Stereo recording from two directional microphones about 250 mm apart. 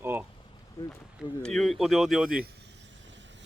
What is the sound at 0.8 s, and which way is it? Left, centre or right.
Speech, centre.